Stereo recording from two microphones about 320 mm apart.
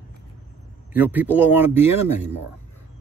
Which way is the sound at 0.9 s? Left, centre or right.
Centre.